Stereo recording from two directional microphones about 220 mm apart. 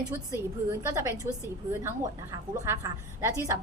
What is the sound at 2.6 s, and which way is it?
Speech, 10° right (ahead or behind).